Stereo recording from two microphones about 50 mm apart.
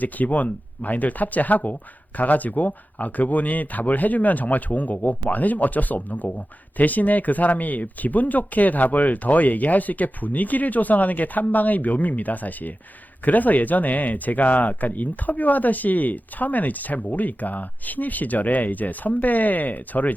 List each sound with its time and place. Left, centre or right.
0.0 s speech: left